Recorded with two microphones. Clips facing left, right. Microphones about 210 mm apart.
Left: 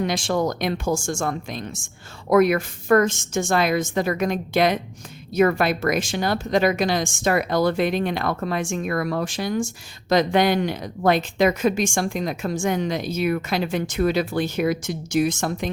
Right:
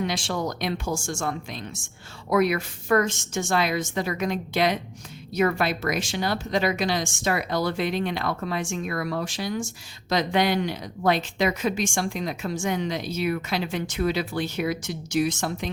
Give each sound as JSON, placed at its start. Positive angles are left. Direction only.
{"t": 0.0, "sound": "speech", "side_deg": 50}